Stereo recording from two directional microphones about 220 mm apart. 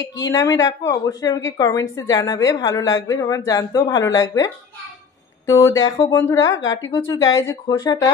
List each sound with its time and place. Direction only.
0.2 s a woman's voice: 15° left (ahead or behind)
5.5 s a woman's voice: 10° left (ahead or behind)